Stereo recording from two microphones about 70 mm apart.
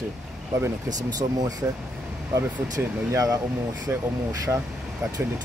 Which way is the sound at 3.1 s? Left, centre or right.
Right.